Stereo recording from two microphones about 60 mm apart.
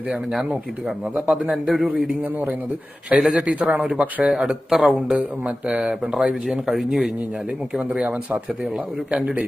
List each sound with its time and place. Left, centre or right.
0.1 s a man's voice: centre
1.6 s speech: centre
1.9 s a man's voice: right
3.2 s a man's voice: centre
4.3 s a man's voice: centre
7.9 s a man's voice: right